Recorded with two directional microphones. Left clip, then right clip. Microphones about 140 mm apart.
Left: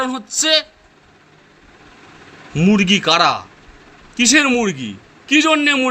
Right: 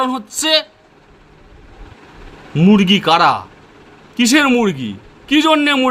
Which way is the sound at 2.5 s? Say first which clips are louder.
Right 2 dB; 30° right (ahead or behind).